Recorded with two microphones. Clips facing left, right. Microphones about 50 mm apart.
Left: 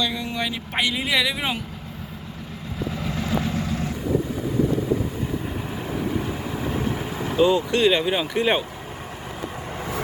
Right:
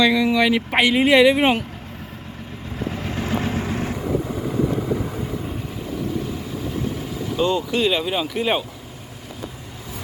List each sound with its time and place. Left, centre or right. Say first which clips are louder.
0.1 s speech: right 10 dB; right
0.9 s speech: right 9 dB; right
2.9 s vehicle: even; right
7.3 s speech: left 2 dB; centre